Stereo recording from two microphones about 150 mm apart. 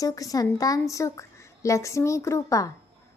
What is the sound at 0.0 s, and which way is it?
Speech, 25° left (ahead or behind).